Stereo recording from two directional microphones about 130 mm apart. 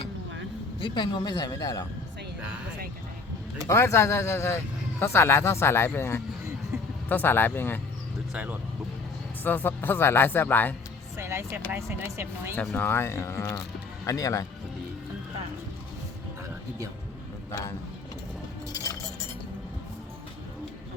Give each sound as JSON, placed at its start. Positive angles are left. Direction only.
{"t": 0.8, "sound": "a woman's voice", "side_deg": 35}
{"t": 3.7, "sound": "speech", "side_deg": 20}
{"t": 8.3, "sound": "speech", "side_deg": -10}
{"t": 9.4, "sound": "speech", "side_deg": 15}
{"t": 11.2, "sound": "speech", "side_deg": -20}
{"t": 12.7, "sound": "speech", "side_deg": 20}
{"t": 17.5, "sound": "speech", "side_deg": 20}
{"t": 18.7, "sound": "a sound", "side_deg": 25}